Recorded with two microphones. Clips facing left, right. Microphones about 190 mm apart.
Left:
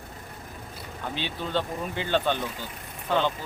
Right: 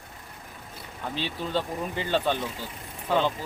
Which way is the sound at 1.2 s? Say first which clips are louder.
Even; centre (ahead or behind).